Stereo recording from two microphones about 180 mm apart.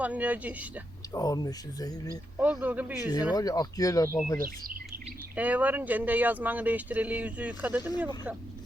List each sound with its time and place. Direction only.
0.0 s speech: 10° right (ahead or behind)
1.1 s speech: 20° left (ahead or behind)
2.4 s speech: 10° right (ahead or behind)
3.3 s speech: 20° left (ahead or behind)
4.4 s speech: 55° right (ahead or behind)
5.4 s speech: 10° right (ahead or behind)
7.8 s speech: 20° left (ahead or behind)